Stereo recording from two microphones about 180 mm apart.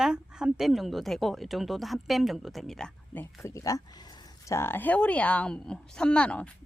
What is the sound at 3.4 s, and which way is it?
Speech, 20° left (ahead or behind).